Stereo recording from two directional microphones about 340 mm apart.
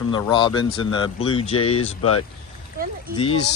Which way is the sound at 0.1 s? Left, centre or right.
Centre.